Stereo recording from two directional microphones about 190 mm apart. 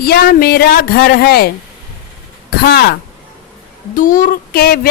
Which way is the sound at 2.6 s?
55° left (ahead or behind).